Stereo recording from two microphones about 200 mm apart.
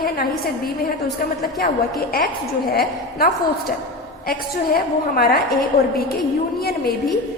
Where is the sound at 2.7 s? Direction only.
50° left (ahead or behind).